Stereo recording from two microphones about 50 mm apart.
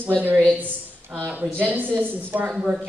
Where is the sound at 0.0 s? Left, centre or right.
Right.